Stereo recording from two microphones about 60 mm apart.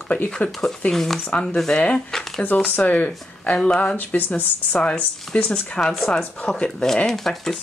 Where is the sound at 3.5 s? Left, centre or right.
Centre.